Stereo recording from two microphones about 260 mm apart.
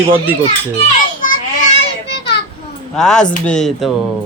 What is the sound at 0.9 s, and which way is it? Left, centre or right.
Children playing, left.